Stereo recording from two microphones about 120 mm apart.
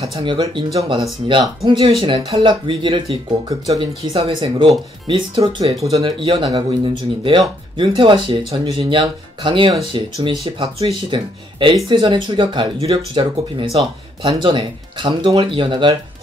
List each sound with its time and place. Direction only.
0.0 s speech: 50° right (ahead or behind)
3.6 s speech: 30° right (ahead or behind)
4.1 s speech: 45° right (ahead or behind)